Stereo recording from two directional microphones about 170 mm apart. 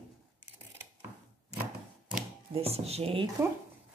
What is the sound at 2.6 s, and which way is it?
Speech, 35° right (ahead or behind).